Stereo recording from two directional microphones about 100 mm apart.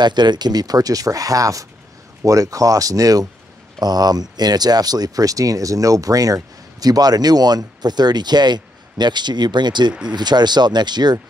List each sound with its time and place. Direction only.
0.0 s speech: 45° right (ahead or behind)